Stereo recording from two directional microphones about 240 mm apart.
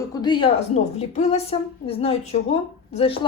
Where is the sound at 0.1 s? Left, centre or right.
Centre.